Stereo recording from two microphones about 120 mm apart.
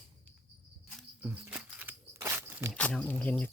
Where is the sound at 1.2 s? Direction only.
15° right (ahead or behind).